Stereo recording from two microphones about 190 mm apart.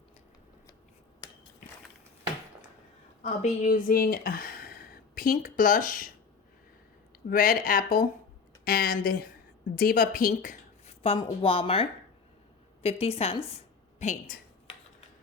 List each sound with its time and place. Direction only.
3.2 s speech: 40° left (ahead or behind)
7.3 s speech: 50° left (ahead or behind)
11.0 s a woman's voice: 30° left (ahead or behind)